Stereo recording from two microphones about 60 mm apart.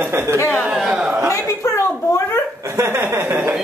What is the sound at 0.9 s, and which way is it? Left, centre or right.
Speech, centre.